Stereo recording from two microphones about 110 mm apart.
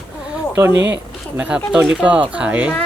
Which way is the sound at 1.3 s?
15° right (ahead or behind).